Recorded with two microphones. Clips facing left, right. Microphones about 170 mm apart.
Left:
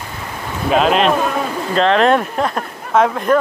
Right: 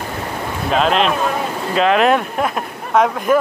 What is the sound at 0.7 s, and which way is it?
Speech, 5° left (ahead or behind).